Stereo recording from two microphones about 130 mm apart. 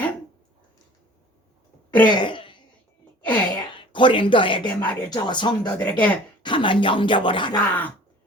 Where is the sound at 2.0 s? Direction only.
35° left (ahead or behind).